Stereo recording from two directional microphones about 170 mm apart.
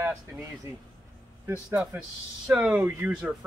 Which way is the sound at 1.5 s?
10° right (ahead or behind).